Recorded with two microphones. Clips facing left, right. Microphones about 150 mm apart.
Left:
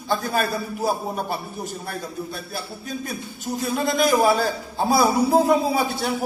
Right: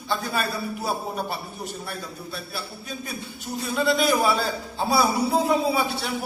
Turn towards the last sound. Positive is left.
turn(degrees=45)  # may be behind; listen again after turning